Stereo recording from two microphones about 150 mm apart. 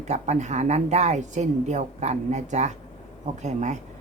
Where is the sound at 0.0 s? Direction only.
50° right (ahead or behind).